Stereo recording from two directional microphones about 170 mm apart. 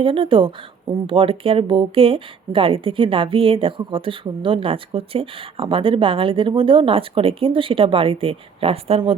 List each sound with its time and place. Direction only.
0.0 s speech: 30° right (ahead or behind)